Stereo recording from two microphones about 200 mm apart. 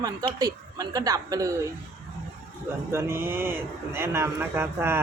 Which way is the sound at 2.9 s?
10° right (ahead or behind).